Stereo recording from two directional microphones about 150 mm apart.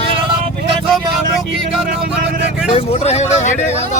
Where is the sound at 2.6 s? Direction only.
45° left (ahead or behind).